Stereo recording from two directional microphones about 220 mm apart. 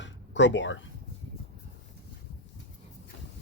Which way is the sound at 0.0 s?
55° left (ahead or behind).